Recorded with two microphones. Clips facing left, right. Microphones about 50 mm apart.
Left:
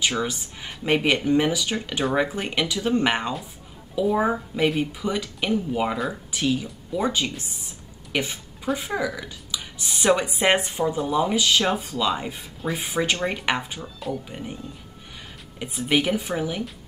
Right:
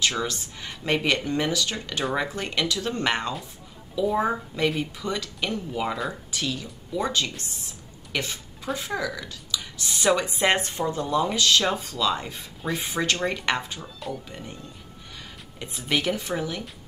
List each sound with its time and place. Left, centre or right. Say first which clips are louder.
0.0 s a woman's voice: left 1 dB; centre
13.7 s speech: left 3 dB; centre
14.3 s speech: left 4 dB; centre
15.6 s speech: left 3 dB; centre